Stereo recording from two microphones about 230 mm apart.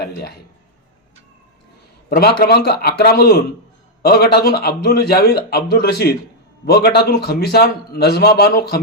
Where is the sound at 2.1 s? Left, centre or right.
Left.